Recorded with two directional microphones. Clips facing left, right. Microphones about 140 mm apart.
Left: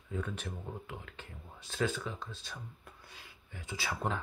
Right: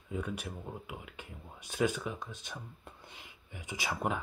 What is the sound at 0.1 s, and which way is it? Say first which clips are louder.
Speech: right 1 dB; 10° right (ahead or behind).